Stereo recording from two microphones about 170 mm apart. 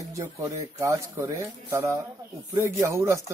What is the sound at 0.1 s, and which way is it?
Speech, 20° right (ahead or behind).